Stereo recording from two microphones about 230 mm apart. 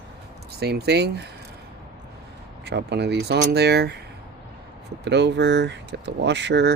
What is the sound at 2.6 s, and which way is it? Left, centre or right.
Speech, right.